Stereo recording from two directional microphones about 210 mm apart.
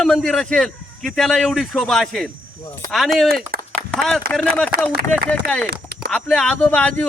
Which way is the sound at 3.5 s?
45° right (ahead or behind).